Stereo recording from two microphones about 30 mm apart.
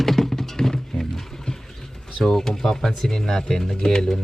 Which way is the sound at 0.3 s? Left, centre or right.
Centre.